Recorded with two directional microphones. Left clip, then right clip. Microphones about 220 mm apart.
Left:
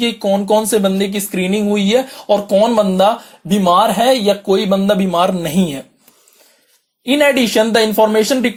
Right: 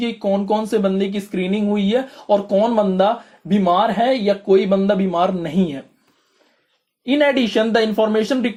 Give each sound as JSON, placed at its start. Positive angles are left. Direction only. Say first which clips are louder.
{"t": 0.0, "sound": "speech", "louder": "left 5 dB", "side_deg": 25}
{"t": 7.0, "sound": "speech", "louder": "left 4 dB", "side_deg": 30}